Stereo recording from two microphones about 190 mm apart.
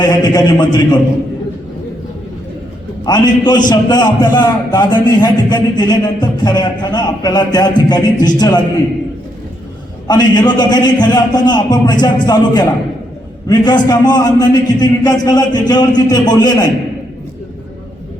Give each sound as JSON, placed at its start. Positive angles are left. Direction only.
{"t": 0.0, "sound": "a man's voice", "side_deg": 20}
{"t": 3.1, "sound": "a man's voice", "side_deg": 20}
{"t": 10.1, "sound": "a man's voice", "side_deg": 20}